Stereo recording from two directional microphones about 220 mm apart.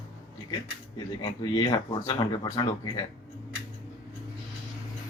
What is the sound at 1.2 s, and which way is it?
Speech, 20° left (ahead or behind).